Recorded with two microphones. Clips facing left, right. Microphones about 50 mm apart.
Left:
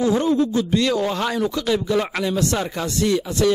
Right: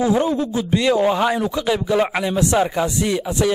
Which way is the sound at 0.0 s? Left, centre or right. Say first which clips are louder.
Even; centre.